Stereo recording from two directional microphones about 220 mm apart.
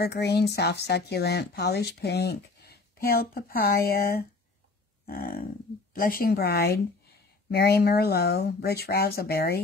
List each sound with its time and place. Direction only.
0.0 s speech: 50° left (ahead or behind)
5.0 s livestock: 40° left (ahead or behind)
5.9 s speech: 40° left (ahead or behind)